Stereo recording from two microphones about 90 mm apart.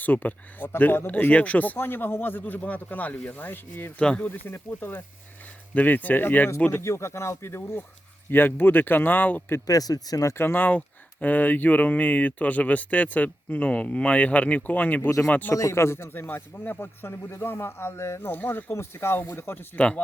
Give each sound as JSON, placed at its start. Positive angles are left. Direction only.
{"t": 0.0, "sound": "a man's voice", "side_deg": 20}
{"t": 4.0, "sound": "speech", "side_deg": 10}
{"t": 4.3, "sound": "a man's voice", "side_deg": 25}
{"t": 6.7, "sound": "a man's voice", "side_deg": 30}
{"t": 9.6, "sound": "a man's voice", "side_deg": 45}
{"t": 15.5, "sound": "a man's voice", "side_deg": 35}